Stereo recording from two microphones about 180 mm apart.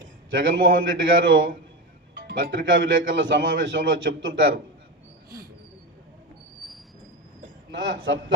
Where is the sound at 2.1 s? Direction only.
55° right (ahead or behind); by 4.1 s 90° right.